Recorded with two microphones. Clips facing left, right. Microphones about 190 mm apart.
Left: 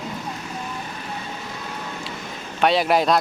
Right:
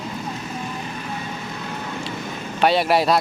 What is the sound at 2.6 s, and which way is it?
Speech, centre (ahead or behind).